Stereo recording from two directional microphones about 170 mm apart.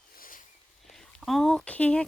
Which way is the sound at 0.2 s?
55° left (ahead or behind).